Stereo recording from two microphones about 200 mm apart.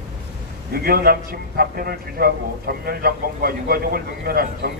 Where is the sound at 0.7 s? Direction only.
50° right (ahead or behind).